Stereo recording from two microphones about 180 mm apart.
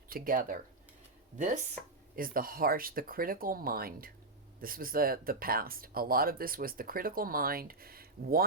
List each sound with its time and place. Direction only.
0.1 s speech: 50° right (ahead or behind)